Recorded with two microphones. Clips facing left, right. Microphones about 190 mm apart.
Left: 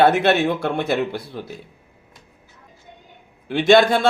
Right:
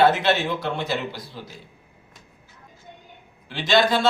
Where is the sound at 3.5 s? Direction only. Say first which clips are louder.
Left 6 dB; 55° left (ahead or behind).